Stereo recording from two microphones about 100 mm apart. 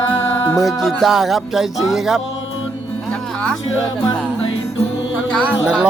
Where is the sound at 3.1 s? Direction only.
10° left (ahead or behind).